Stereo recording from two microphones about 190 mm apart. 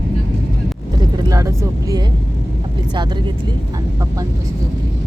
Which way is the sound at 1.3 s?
20° right (ahead or behind).